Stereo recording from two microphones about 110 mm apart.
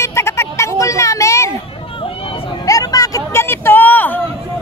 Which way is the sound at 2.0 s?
55° left (ahead or behind).